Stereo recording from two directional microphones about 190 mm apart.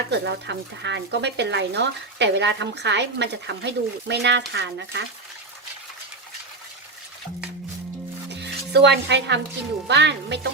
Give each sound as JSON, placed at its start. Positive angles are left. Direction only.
{"t": 0.1, "sound": "speech", "side_deg": -65}
{"t": 8.3, "sound": "music", "side_deg": -65}
{"t": 9.9, "sound": "speech", "side_deg": -65}